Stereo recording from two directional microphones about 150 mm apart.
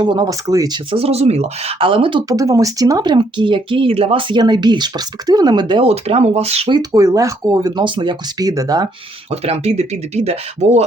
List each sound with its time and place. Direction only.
0.0 s speech: 30° right (ahead or behind)
0.9 s speech: 40° right (ahead or behind)
2.3 s speech: 20° right (ahead or behind); by 6.7 s 40° right (ahead or behind)
6.7 s speech: 25° right (ahead or behind)
9.3 s speech: 45° right (ahead or behind)